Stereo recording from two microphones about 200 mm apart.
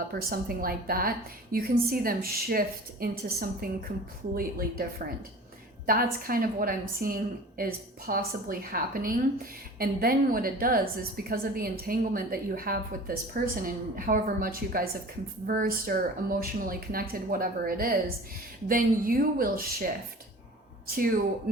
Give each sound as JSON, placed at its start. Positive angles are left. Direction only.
{"t": 0.1, "sound": "a woman's voice", "side_deg": -50}